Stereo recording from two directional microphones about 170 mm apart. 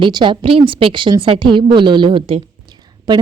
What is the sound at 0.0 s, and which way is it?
A woman's voice, 30° right (ahead or behind).